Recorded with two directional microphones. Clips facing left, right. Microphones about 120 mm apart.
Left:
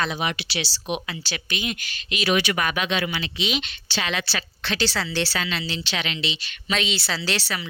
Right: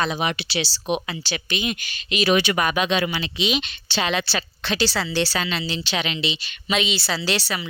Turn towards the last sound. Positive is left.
turn(degrees=-10)  # may be behind; listen again after turning